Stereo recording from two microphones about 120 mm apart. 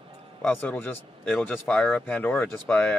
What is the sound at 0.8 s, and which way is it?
Speech, 20° left (ahead or behind).